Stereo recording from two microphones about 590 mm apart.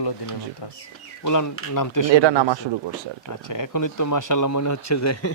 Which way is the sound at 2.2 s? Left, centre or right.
Right.